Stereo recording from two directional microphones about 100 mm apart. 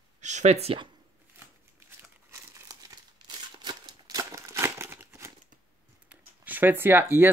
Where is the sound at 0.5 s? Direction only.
85° right.